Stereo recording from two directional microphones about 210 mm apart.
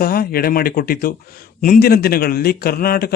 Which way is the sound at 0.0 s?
45° left (ahead or behind).